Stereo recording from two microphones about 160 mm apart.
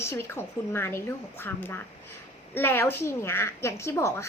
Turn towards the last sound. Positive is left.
turn(degrees=15)  # may be behind; listen again after turning